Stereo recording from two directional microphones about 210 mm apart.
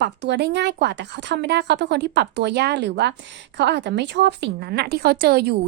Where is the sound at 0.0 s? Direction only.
55° right (ahead or behind).